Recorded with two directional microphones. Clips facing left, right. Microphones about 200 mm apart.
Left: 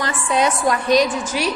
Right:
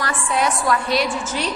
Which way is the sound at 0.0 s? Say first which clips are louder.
Left 2 dB; 20° left (ahead or behind).